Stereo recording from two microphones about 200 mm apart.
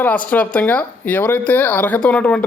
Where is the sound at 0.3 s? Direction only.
5° left (ahead or behind).